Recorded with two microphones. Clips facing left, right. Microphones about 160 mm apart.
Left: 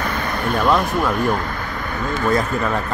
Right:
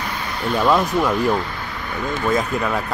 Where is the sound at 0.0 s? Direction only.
50° left (ahead or behind).